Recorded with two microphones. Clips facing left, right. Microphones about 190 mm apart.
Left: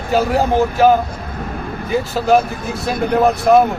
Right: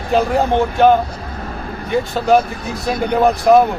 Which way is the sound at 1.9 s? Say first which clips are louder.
Even; centre (ahead or behind).